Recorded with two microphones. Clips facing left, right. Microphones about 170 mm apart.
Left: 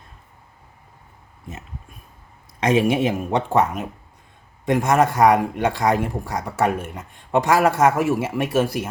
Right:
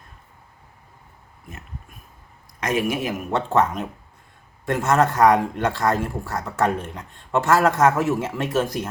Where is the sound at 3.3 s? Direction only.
15° left (ahead or behind).